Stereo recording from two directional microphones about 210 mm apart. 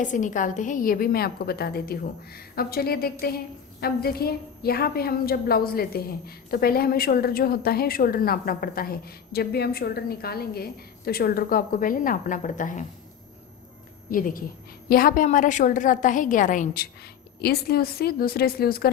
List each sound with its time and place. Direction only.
0.0 s a woman's voice: 35° left (ahead or behind)
14.1 s a woman's voice: 40° left (ahead or behind)